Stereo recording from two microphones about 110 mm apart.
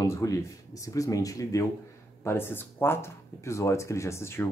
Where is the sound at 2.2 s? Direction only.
20° left (ahead or behind).